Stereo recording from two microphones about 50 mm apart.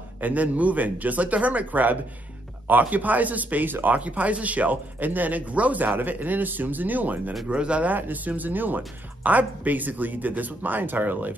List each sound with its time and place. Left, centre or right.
0.2 s speech: right
3.9 s speech: right
7.4 s speech: right
7.9 s speech: right